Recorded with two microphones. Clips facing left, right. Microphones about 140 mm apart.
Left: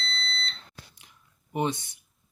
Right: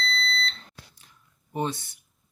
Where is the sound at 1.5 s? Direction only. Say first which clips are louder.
Left 1 dB; 15° left (ahead or behind).